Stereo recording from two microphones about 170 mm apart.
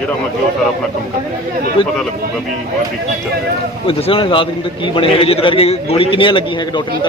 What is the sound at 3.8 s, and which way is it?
A man's voice, 35° left (ahead or behind).